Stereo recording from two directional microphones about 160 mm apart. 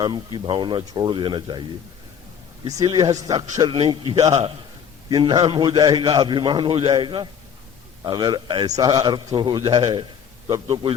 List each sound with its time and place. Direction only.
0.0 s a man's voice: 30° right (ahead or behind)
2.6 s a man's voice: 25° right (ahead or behind)
5.0 s a man's voice: 25° right (ahead or behind)